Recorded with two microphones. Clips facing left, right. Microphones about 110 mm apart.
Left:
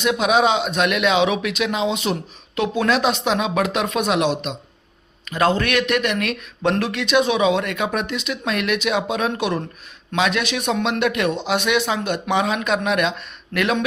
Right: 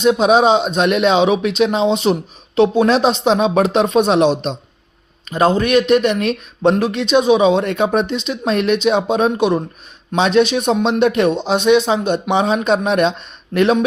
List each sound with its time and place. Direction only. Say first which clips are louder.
0.0 s speech: right 5 dB; 25° right (ahead or behind)
5.3 s speech: right 5 dB; 20° right (ahead or behind)
11.3 s speech: right 7 dB; 20° right (ahead or behind)